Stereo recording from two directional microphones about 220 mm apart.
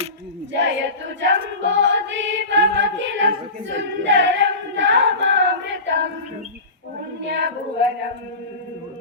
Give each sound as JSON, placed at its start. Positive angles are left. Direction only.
{"t": 0.5, "sound": "choir", "side_deg": -55}
{"t": 5.8, "sound": "music", "side_deg": -50}
{"t": 7.2, "sound": "child singing", "side_deg": -55}